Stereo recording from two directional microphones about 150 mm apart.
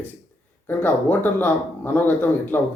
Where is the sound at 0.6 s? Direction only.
15° left (ahead or behind).